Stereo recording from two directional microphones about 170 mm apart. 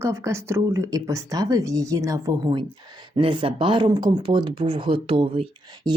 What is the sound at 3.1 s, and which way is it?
Speech, 30° right (ahead or behind).